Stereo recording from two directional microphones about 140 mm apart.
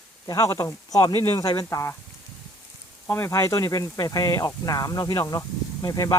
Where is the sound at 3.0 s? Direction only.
20° left (ahead or behind).